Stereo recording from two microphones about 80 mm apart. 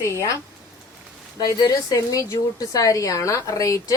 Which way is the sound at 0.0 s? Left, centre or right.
Left.